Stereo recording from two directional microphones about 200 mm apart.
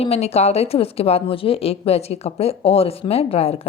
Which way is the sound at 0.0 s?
30° left (ahead or behind).